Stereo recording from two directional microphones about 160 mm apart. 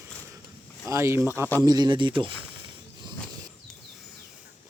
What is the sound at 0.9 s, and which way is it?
Speech, 15° right (ahead or behind).